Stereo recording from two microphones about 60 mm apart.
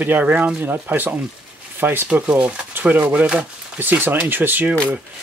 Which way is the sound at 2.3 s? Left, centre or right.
Right.